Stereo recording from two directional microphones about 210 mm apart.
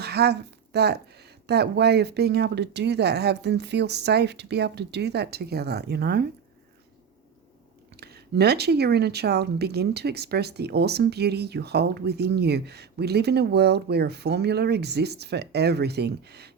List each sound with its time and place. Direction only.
0.0 s a woman's voice: 50° right (ahead or behind)
7.9 s speech: 50° right (ahead or behind)